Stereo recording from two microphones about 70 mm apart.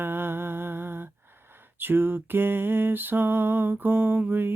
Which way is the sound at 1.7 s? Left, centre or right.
Right.